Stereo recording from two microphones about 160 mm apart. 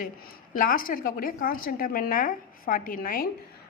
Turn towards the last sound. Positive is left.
turn(degrees=60)  # may be behind; listen again after turning